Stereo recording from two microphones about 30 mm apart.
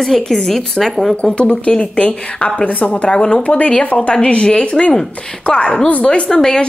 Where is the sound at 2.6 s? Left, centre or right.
Left.